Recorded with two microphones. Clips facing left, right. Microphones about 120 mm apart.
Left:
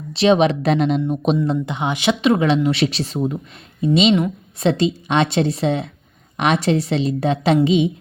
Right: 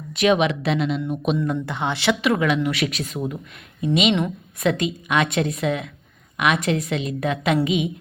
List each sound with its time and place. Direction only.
0.1 s a woman's voice: 30° left (ahead or behind)
1.0 s a woman's voice: 30° left (ahead or behind)
1.6 s a woman's voice: 20° left (ahead or behind)